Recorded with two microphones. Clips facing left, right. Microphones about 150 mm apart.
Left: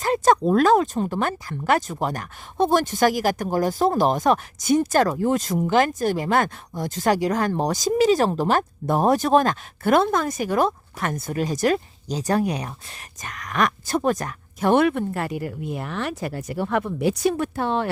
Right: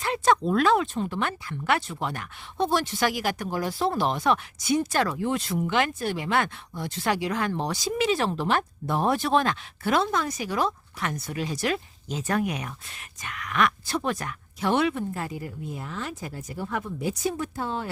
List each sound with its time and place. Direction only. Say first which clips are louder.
0.0 s speech: left 4 dB; 40° left (ahead or behind); by 17.8 s 70° left (ahead or behind)